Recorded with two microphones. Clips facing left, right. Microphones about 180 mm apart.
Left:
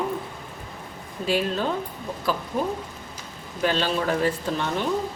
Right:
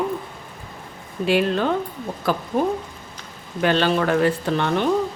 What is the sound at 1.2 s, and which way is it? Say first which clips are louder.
Speech: right 5 dB; 65° right (ahead or behind).